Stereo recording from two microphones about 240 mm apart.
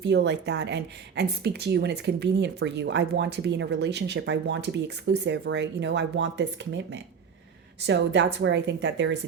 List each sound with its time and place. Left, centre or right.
0.0 s speech: right